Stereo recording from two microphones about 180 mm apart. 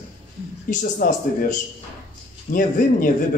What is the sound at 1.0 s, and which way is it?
A man's voice, 50° left (ahead or behind).